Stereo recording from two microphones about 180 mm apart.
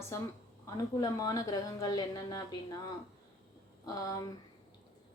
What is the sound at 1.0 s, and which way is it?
A woman's voice, 20° left (ahead or behind).